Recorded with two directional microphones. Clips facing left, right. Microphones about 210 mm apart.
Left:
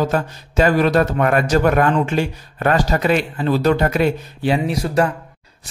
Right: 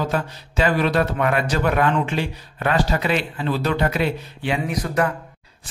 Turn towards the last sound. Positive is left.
turn(degrees=30)  # may be behind; listen again after turning